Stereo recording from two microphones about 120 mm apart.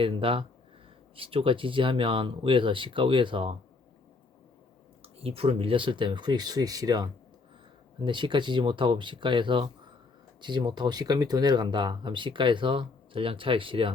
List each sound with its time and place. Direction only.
0.0 s speech: 50° right (ahead or behind)
5.0 s speech: 55° right (ahead or behind)